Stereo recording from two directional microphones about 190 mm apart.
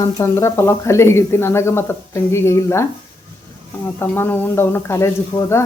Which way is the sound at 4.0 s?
10° left (ahead or behind).